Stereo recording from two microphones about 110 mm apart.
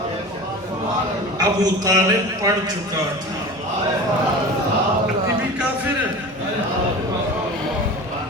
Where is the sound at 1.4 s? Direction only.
35° right (ahead or behind).